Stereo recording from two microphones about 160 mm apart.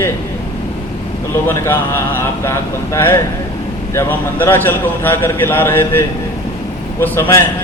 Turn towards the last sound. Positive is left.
turn(degrees=15)  # may be behind; listen again after turning